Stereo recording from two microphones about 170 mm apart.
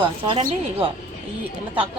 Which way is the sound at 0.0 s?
30° right (ahead or behind).